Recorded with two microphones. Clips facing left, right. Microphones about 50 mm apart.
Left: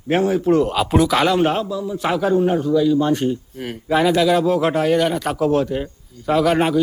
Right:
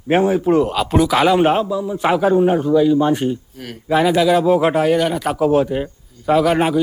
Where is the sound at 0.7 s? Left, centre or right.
Centre.